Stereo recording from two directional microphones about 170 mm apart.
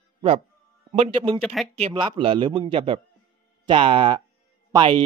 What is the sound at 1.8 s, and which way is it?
Speech, 30° right (ahead or behind).